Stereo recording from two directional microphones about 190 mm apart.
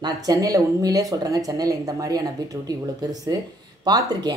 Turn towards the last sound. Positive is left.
turn(degrees=-20)  # may be behind; listen again after turning